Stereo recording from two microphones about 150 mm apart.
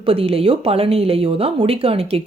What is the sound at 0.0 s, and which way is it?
Speech, 40° right (ahead or behind).